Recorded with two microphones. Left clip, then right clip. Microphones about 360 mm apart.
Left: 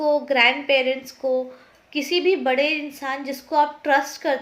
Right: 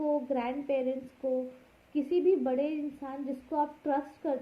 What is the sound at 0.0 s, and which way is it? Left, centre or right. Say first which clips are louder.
Speech: left 13 dB; centre.